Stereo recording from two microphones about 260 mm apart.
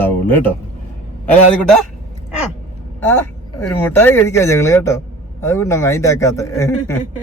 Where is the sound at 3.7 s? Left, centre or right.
Centre.